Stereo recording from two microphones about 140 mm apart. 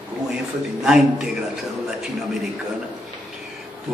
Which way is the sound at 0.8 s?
5° right (ahead or behind).